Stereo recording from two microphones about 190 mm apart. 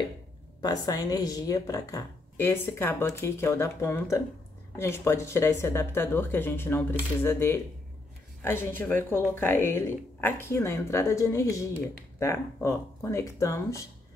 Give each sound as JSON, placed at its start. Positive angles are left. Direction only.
{"t": 0.6, "sound": "speech", "side_deg": 20}